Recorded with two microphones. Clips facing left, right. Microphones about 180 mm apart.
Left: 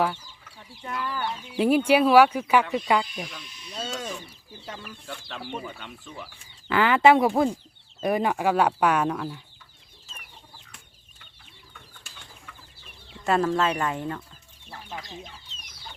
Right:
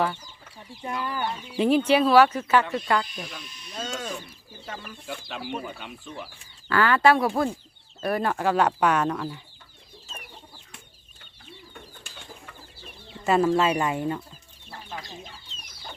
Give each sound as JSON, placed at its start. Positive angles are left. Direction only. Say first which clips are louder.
{"t": 0.8, "sound": "speech", "louder": "right 1 dB", "side_deg": -15}
{"t": 1.4, "sound": "speech", "louder": "even", "side_deg": 5}
{"t": 3.8, "sound": "mechanisms", "louder": "even", "side_deg": 5}
{"t": 5.0, "sound": "speech", "louder": "right 4 dB", "side_deg": -10}
{"t": 6.7, "sound": "speech", "louder": "left 2 dB", "side_deg": 20}
{"t": 13.2, "sound": "speech", "louder": "right 2 dB", "side_deg": -5}